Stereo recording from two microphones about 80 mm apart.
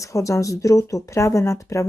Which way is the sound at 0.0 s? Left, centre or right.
Left.